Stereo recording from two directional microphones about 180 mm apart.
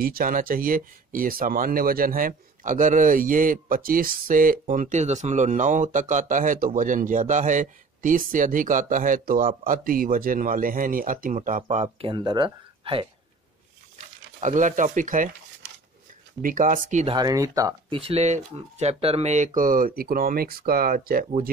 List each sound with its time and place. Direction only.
0.0 s speech: 50° right (ahead or behind)
11.6 s speech: 35° right (ahead or behind)
12.1 s speech: 25° right (ahead or behind)
14.4 s speech: 45° right (ahead or behind)
16.3 s speech: 45° right (ahead or behind)
17.1 s speech: 20° right (ahead or behind)
17.9 s speech: 35° right (ahead or behind); by 21.3 s 55° right (ahead or behind)